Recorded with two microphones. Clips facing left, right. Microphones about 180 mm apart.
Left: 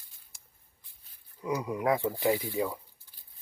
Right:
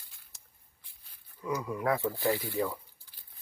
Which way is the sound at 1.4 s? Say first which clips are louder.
Left 2 dB; 20° left (ahead or behind).